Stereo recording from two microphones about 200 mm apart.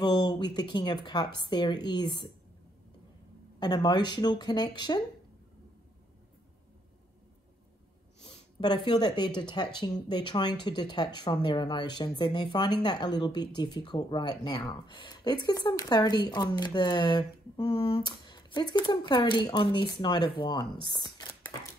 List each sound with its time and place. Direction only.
0.0 s speech: 20° left (ahead or behind)
3.5 s speech: 20° left (ahead or behind)
8.3 s speech: 25° left (ahead or behind)
20.9 s a sound: 20° left (ahead or behind)